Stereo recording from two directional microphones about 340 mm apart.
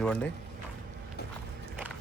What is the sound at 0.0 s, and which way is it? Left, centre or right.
Speech, centre.